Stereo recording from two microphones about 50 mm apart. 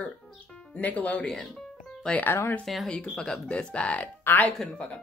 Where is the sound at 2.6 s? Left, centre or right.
Centre.